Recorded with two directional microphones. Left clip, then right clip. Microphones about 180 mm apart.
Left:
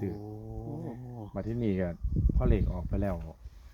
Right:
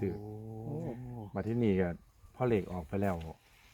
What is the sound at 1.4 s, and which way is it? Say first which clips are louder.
Speech: right 1 dB; 20° left (ahead or behind).